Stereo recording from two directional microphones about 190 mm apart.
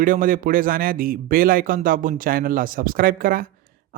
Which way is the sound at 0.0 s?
45° right (ahead or behind).